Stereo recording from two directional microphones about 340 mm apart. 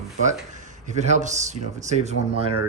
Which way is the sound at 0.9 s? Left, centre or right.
Centre.